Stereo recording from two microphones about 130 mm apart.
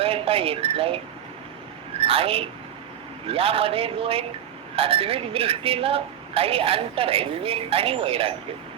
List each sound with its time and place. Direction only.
0.0 s speech: 45° right (ahead or behind)
2.0 s a woman's voice: 45° right (ahead or behind)